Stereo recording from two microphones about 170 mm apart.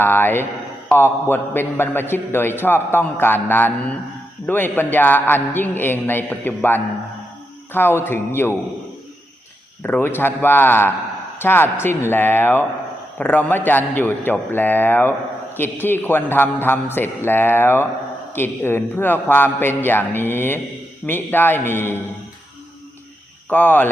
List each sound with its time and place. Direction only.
0.0 s a man's voice: 10° left (ahead or behind)
9.8 s a man's voice: 10° left (ahead or behind)
23.5 s a man's voice: 10° left (ahead or behind)